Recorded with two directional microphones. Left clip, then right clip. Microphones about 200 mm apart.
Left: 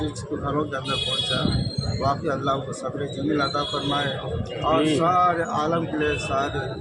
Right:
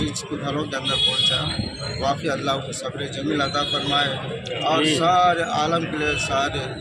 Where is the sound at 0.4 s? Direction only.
5° left (ahead or behind).